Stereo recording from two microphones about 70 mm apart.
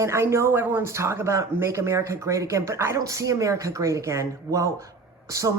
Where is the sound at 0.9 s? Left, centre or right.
Right.